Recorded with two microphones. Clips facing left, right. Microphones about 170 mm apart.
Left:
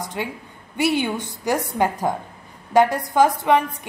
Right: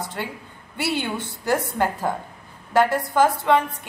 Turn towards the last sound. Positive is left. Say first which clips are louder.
# left 1 dB
turn(degrees=10)  # may be behind; listen again after turning